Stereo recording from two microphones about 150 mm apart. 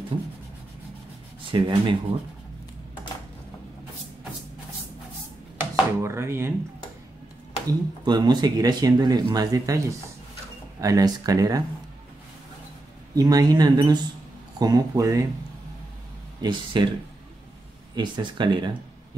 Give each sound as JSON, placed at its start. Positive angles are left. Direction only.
{"t": 1.5, "sound": "speech", "side_deg": -35}
{"t": 5.6, "sound": "chopping", "side_deg": -15}
{"t": 7.6, "sound": "speech", "side_deg": -30}
{"t": 13.1, "sound": "speech", "side_deg": -25}
{"t": 16.3, "sound": "speech", "side_deg": -30}
{"t": 17.9, "sound": "speech", "side_deg": -30}